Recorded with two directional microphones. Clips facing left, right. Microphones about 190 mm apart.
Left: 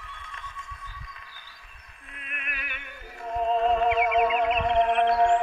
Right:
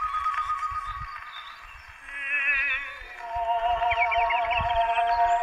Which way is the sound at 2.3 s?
40° left (ahead or behind).